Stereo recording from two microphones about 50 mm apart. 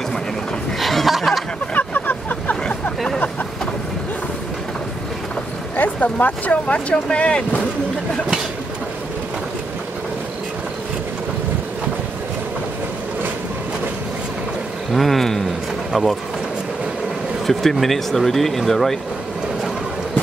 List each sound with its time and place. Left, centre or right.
0.7 s chuckle: centre
1.7 s vehicle: left
5.8 s speech: left
14.9 s vehicle: centre
15.9 s speech: centre
17.5 s speech: centre